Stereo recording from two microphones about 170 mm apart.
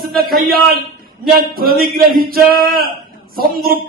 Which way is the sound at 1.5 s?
60° right (ahead or behind).